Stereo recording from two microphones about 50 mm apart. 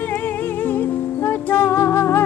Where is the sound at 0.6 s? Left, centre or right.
Left.